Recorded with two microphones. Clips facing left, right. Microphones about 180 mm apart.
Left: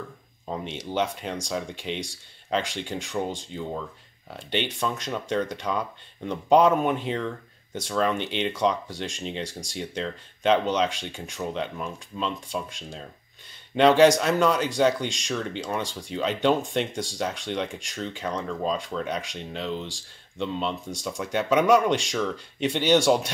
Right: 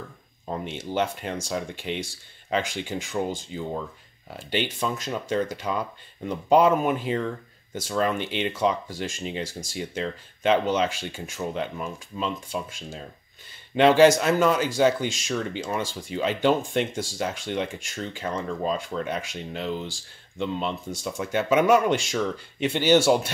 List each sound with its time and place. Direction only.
0.5 s speech: 5° right (ahead or behind)